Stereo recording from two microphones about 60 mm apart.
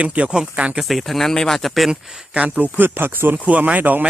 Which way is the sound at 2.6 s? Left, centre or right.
Right.